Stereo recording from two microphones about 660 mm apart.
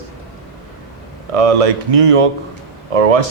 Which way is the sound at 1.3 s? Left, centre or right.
Right.